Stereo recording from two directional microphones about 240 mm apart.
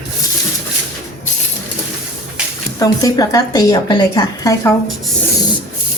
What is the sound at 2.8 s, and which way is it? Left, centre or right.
A woman's voice, centre.